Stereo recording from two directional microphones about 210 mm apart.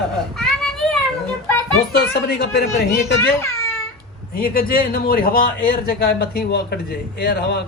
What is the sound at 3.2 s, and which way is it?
Speech, 10° left (ahead or behind).